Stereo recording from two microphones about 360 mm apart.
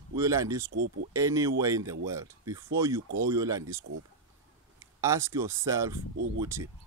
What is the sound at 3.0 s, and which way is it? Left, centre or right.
Speech, right.